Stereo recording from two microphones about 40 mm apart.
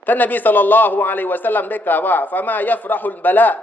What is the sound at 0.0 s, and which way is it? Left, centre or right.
A man's voice, left.